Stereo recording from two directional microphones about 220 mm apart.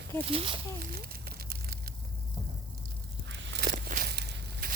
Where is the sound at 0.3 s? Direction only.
25° right (ahead or behind).